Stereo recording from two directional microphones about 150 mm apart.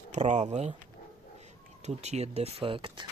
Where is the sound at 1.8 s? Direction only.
45° right (ahead or behind).